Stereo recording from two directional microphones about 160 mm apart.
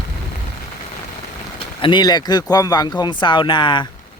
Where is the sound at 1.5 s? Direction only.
30° left (ahead or behind).